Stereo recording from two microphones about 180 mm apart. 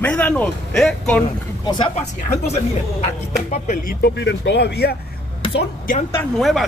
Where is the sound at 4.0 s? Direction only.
75° left (ahead or behind).